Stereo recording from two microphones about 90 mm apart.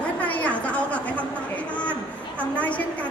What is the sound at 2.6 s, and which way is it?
Speech, 15° left (ahead or behind).